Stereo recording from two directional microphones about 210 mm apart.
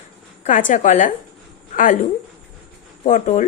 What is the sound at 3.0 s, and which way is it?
Speech, 35° left (ahead or behind).